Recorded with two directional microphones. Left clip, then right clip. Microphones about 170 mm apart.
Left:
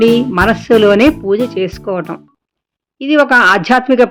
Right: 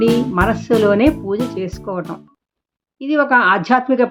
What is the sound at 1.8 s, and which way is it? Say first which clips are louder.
A woman's voice: left 6 dB; 20° left (ahead or behind).